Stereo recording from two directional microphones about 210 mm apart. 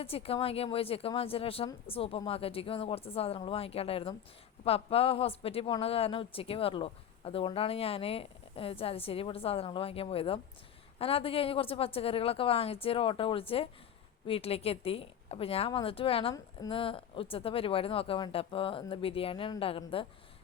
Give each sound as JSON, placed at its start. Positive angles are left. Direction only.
{"t": 0.0, "sound": "speech", "side_deg": 25}